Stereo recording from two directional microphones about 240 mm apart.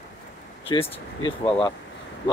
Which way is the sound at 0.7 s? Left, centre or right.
Centre.